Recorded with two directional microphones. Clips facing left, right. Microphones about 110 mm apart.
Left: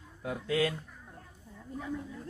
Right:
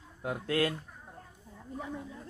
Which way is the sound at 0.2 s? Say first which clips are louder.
Even; 55° right (ahead or behind).